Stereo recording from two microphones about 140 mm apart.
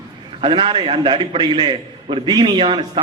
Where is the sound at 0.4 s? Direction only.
40° right (ahead or behind).